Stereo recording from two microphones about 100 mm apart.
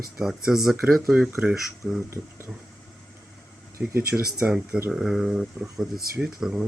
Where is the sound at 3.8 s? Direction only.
5° right (ahead or behind).